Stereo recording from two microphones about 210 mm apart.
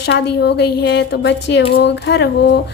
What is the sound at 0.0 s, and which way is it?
A woman's voice, 55° left (ahead or behind).